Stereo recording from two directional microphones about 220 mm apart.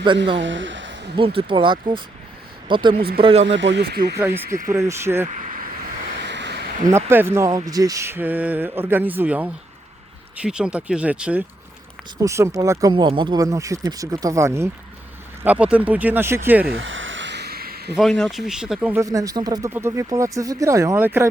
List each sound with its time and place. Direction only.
0.3 s speech: 55° right (ahead or behind)
1.1 s speech: 25° right (ahead or behind)
2.9 s speech: 45° right (ahead or behind)
3.2 s speech: 25° right (ahead or behind)
3.4 s speech: 55° right (ahead or behind)
4.2 s speech: 10° right (ahead or behind)
4.4 s speech: 40° right (ahead or behind)
4.7 s speech: 10° right (ahead or behind)
6.2 s a sound: 50° right (ahead or behind)
6.9 s speech: 10° right (ahead or behind)
16.7 s a sound: 60° right (ahead or behind); by 17.9 s 45° right (ahead or behind)
17.9 s speech: centre (ahead or behind)